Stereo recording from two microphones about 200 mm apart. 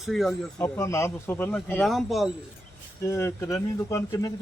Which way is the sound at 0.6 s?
15° left (ahead or behind).